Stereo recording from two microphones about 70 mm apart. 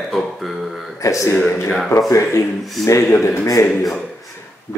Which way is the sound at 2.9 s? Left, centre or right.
Left.